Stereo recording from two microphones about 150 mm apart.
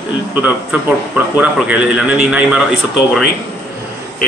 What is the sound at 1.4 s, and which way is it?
Speech, 10° right (ahead or behind).